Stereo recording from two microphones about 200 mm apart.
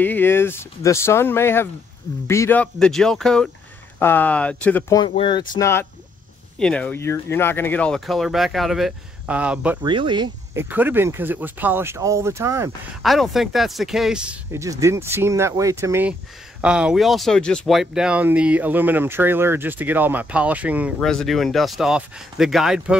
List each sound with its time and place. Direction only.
0.0 s speech: 10° left (ahead or behind)
5.0 s speech: 25° left (ahead or behind)
5.6 s speech: 10° left (ahead or behind); by 9.8 s 5° right (ahead or behind)
9.8 s speech: 25° right (ahead or behind)
10.6 s speech: 10° right (ahead or behind)
13.0 s speech: centre (ahead or behind)